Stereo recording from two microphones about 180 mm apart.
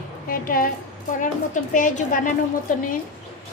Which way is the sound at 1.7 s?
45° left (ahead or behind).